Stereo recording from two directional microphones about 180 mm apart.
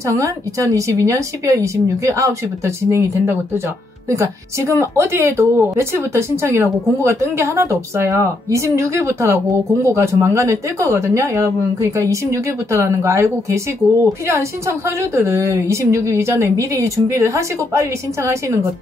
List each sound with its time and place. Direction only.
0.0 s speech: 15° right (ahead or behind)